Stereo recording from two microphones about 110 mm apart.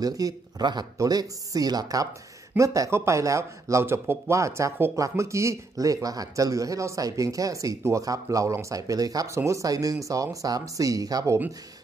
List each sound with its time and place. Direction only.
0.0 s speech: 35° right (ahead or behind)